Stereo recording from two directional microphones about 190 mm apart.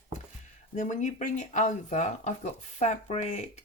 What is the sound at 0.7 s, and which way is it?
Speech, 40° left (ahead or behind).